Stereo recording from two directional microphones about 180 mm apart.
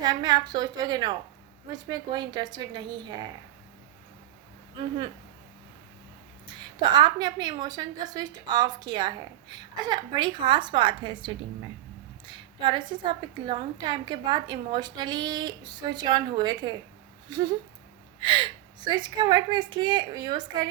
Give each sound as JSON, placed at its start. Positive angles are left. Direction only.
{"t": 0.0, "sound": "a woman's voice", "side_deg": -25}
{"t": 6.9, "sound": "a woman's voice", "side_deg": -25}